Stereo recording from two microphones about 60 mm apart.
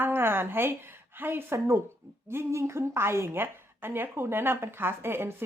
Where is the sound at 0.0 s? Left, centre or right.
Right.